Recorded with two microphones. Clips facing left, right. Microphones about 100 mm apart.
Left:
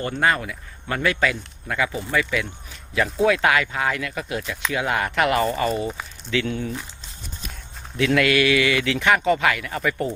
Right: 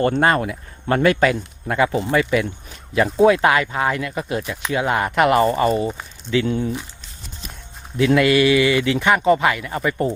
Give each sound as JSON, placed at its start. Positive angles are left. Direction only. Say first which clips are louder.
{"t": 0.2, "sound": "speech", "louder": "right 4 dB", "side_deg": -40}
{"t": 2.0, "sound": "speech", "louder": "right 5 dB", "side_deg": -25}
{"t": 7.9, "sound": "speech", "louder": "right 4 dB", "side_deg": -25}